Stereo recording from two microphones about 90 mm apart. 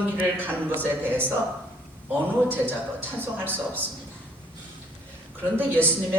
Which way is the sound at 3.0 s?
25° right (ahead or behind).